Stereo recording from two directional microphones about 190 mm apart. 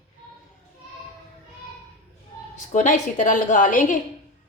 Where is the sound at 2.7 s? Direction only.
40° left (ahead or behind).